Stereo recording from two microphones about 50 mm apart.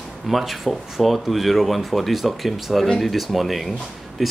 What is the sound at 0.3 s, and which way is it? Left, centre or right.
Speech, centre.